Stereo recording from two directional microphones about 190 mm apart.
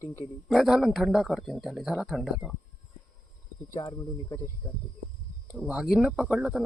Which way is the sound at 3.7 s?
20° left (ahead or behind).